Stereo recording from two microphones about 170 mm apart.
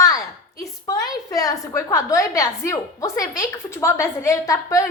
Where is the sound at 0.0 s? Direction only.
20° left (ahead or behind).